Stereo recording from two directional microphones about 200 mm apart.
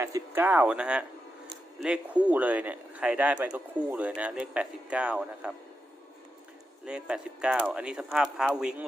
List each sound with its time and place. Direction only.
0.0 s speech: 10° right (ahead or behind)
6.8 s speech: 5° right (ahead or behind)